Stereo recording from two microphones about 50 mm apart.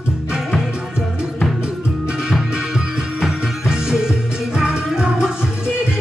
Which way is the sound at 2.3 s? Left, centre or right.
Centre.